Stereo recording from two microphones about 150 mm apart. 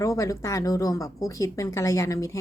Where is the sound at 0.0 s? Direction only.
20° left (ahead or behind).